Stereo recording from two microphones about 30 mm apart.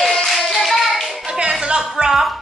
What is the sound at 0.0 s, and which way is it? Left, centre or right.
Music, centre.